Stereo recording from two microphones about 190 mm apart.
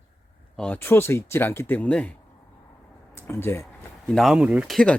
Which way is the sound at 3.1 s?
10° left (ahead or behind).